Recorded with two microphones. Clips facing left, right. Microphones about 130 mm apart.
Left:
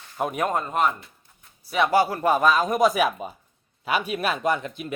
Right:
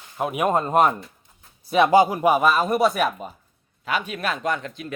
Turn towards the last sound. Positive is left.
turn(degrees=10)  # may be behind; listen again after turning